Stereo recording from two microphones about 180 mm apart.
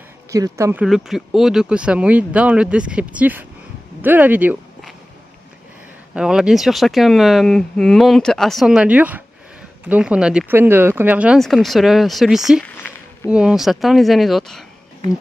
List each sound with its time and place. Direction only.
0.3 s speech: 15° right (ahead or behind)
0.8 s speech: centre (ahead or behind)
6.1 s speech: 5° right (ahead or behind)
12.6 s a sound: 10° left (ahead or behind)
13.3 s speech: 5° right (ahead or behind)